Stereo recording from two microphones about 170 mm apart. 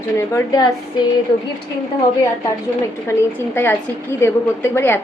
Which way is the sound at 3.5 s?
15° left (ahead or behind).